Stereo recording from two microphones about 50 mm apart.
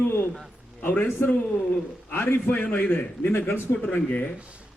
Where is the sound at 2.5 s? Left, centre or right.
Left.